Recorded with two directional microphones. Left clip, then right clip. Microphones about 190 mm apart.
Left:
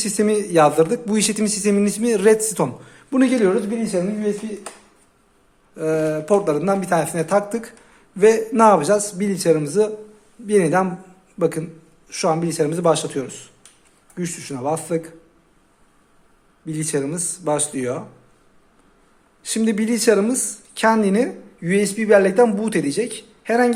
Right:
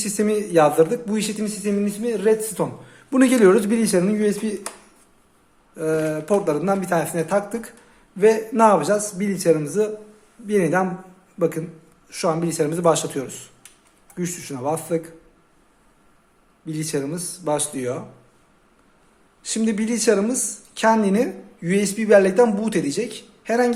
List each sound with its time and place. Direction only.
0.0 s a man's voice: 15° left (ahead or behind)
3.1 s speech: 5° right (ahead or behind)
3.5 s speech: 25° right (ahead or behind)
5.7 s a woman's voice: 10° left (ahead or behind)
16.6 s a woman's voice: 10° left (ahead or behind)
19.4 s a woman's voice: 10° left (ahead or behind)